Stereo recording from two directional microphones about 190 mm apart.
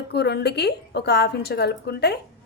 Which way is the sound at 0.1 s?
60° left (ahead or behind).